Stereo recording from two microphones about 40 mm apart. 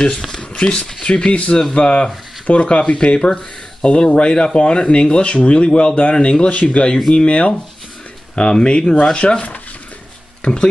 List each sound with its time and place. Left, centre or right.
0.2 s a sound: centre
0.5 s speech: centre
1.0 s speech: left
9.1 s speech: left